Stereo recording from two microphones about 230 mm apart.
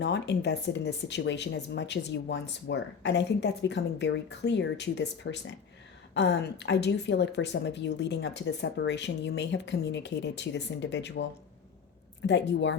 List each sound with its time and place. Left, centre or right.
0.0 s speech: left